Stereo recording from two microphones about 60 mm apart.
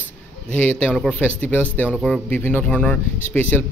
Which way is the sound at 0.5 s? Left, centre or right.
Left.